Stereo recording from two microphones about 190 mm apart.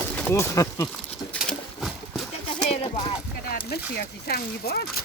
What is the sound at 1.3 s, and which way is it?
Horse, centre (ahead or behind).